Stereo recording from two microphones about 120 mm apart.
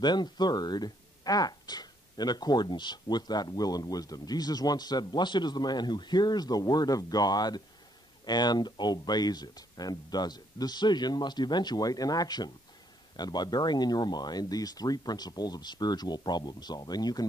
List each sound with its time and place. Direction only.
0.0 s speech: 35° left (ahead or behind)